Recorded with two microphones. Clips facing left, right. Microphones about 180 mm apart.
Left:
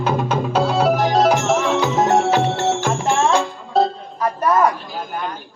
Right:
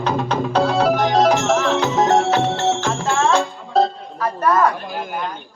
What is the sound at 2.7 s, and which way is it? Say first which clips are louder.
Music: left 1 dB; 15° left (ahead or behind).